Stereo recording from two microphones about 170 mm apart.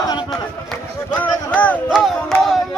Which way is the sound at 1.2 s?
10° left (ahead or behind).